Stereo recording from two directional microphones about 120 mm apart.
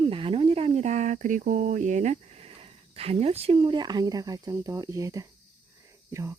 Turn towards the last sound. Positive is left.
turn(degrees=-25)  # may be behind; listen again after turning